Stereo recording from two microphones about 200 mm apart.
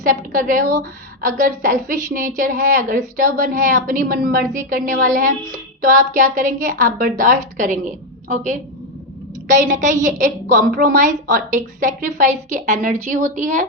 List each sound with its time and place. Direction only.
0.0 s a woman's voice: 40° right (ahead or behind)